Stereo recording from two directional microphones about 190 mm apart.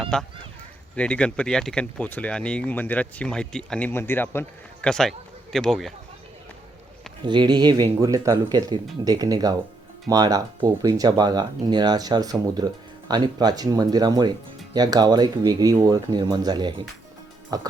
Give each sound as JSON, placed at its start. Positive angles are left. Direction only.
{"t": 0.0, "sound": "speech", "side_deg": 0}
{"t": 7.3, "sound": "speech", "side_deg": -25}